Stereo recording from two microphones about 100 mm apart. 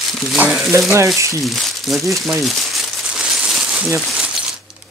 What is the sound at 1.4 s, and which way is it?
Speech, centre (ahead or behind).